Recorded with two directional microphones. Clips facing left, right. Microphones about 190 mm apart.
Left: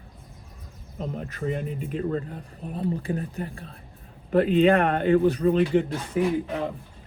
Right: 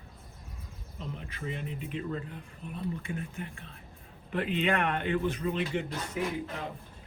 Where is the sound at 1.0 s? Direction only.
45° left (ahead or behind).